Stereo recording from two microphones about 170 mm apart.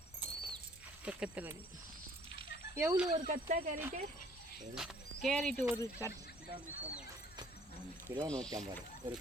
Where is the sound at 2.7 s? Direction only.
15° right (ahead or behind).